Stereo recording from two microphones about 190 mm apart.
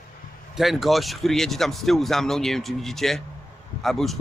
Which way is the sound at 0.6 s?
Centre (ahead or behind).